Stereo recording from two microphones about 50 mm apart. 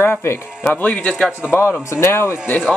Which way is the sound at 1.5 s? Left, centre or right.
Left.